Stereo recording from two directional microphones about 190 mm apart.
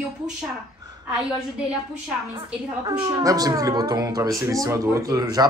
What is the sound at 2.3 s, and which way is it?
A woman's voice, 20° right (ahead or behind).